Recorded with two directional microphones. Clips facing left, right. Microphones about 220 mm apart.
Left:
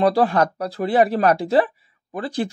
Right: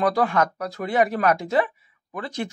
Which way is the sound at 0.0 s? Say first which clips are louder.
Left 4 dB; 35° left (ahead or behind).